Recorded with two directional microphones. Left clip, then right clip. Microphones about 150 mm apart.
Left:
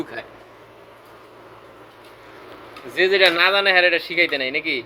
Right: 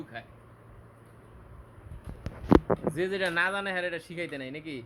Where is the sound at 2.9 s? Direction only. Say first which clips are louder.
Left 13 dB; 15° right (ahead or behind).